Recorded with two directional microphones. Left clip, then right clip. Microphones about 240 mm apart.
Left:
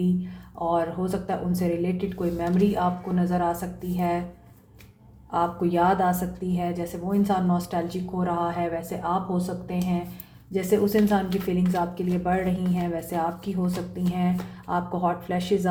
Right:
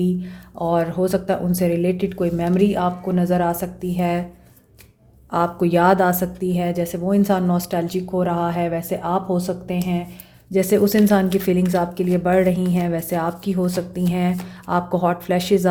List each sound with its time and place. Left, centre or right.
0.7 s speech: right
5.3 s speech: right